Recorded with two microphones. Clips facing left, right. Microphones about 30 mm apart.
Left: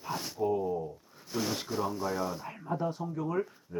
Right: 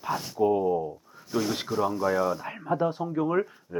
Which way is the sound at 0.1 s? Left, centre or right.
Centre.